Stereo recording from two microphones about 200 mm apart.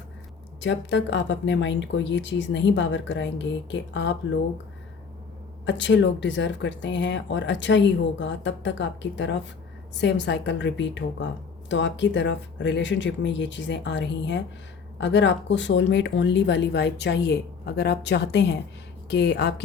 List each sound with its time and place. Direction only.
0.6 s speech: 60° left (ahead or behind)
5.6 s speech: 60° left (ahead or behind)